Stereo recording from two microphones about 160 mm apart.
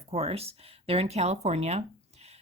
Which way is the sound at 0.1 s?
40° right (ahead or behind).